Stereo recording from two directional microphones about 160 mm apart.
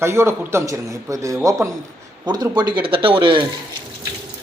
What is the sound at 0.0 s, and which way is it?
A man's voice, 15° right (ahead or behind).